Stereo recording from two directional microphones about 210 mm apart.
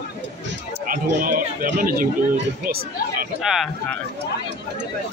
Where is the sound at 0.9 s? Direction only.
40° right (ahead or behind).